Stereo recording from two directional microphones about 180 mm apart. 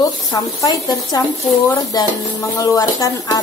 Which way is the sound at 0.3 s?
20° left (ahead or behind).